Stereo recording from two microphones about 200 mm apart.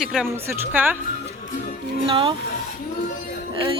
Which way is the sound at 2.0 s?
25° right (ahead or behind).